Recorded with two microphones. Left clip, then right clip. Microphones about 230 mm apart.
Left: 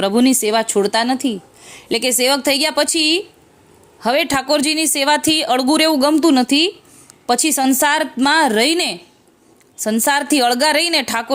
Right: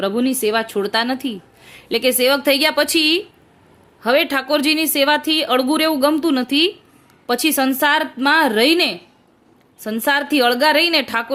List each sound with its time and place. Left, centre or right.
0.0 s a woman's voice: left